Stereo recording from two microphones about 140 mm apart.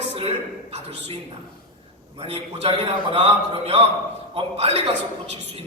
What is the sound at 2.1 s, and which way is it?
A man's voice, 45° right (ahead or behind).